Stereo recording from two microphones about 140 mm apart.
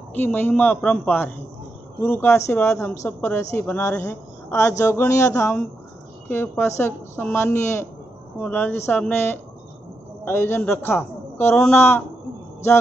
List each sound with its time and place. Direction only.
0.1 s a woman's voice: 15° left (ahead or behind)